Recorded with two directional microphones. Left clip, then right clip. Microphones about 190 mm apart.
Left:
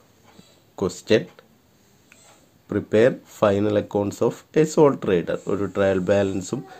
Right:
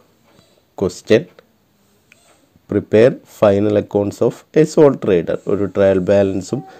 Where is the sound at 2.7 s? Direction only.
25° right (ahead or behind).